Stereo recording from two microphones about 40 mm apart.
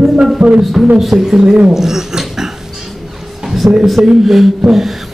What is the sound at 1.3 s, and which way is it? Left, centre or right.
Speech, right.